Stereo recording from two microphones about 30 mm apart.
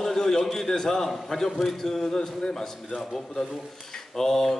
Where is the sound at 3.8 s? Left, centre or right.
Centre.